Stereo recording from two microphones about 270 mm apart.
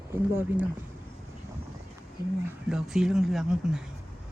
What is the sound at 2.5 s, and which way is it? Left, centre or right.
Speech, centre.